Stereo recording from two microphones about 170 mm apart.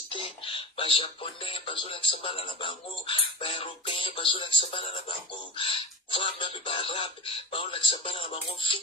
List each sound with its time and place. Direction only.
0.1 s speech: 30° left (ahead or behind)